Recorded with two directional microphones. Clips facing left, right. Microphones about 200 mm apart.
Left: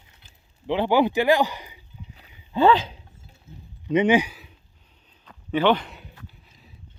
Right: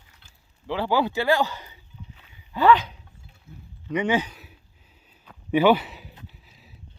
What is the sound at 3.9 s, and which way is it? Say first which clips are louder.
Speech: left 5 dB; 20° left (ahead or behind).